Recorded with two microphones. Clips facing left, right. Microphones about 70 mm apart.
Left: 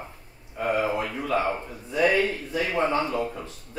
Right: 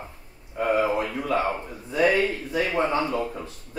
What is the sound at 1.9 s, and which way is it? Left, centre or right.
Speech, right.